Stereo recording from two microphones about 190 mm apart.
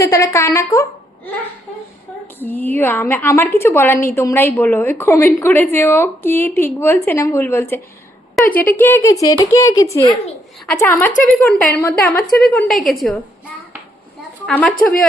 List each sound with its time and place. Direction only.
0.0 s a woman's voice: 15° left (ahead or behind); by 13.1 s centre (ahead or behind)
14.4 s a woman's voice: 5° left (ahead or behind)